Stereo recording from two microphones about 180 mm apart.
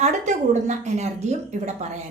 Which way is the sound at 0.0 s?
40° right (ahead or behind).